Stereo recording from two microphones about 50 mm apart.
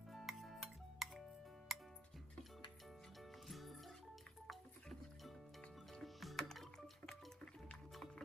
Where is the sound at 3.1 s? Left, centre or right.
Centre.